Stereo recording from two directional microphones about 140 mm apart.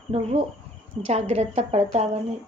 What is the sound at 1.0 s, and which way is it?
Speech, 50° right (ahead or behind).